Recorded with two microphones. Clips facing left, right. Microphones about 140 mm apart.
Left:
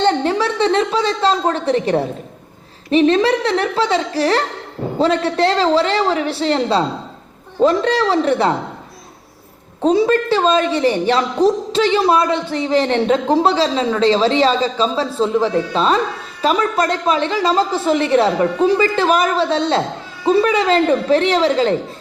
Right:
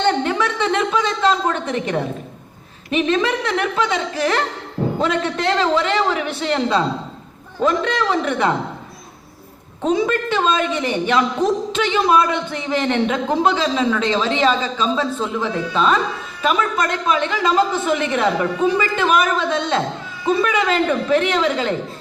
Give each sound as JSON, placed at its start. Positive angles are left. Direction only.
{"t": 0.0, "sound": "a woman's voice", "side_deg": 35}
{"t": 9.8, "sound": "a woman's voice", "side_deg": 35}